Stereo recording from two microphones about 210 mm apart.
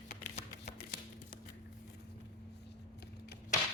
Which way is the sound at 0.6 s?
50° left (ahead or behind).